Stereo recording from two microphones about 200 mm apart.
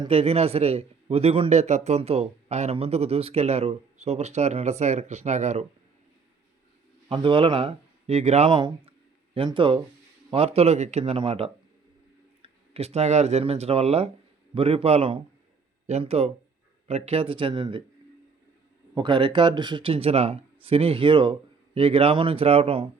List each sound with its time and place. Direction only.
0.0 s a man's voice: 30° right (ahead or behind)
7.1 s a man's voice: 25° right (ahead or behind)
18.9 s speech: 25° right (ahead or behind)